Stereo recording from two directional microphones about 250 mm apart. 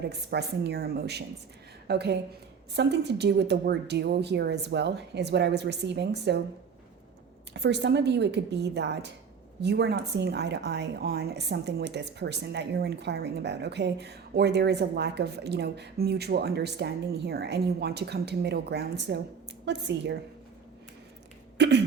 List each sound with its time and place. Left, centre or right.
0.1 s a woman's voice: right
7.5 s a woman's voice: right
21.6 s a woman's voice: right